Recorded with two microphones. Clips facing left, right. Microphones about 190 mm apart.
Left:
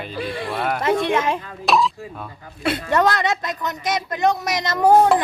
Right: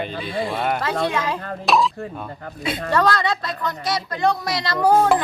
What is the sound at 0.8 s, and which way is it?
Speech, 20° left (ahead or behind).